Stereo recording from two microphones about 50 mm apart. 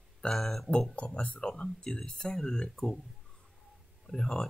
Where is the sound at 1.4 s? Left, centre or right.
Centre.